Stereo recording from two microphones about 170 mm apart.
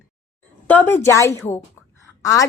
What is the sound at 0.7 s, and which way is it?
A woman's voice, 10° left (ahead or behind).